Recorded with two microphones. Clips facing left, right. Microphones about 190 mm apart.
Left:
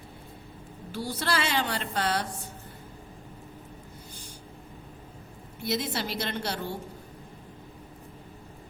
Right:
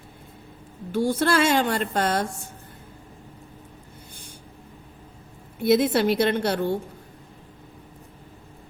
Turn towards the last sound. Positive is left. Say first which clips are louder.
# right 10 dB
turn(degrees=-55)  # may be behind; listen again after turning